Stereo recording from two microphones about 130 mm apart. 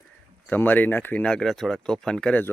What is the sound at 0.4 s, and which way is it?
Speech, 15° left (ahead or behind).